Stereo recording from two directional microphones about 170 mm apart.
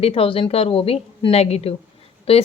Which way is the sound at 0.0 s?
35° left (ahead or behind).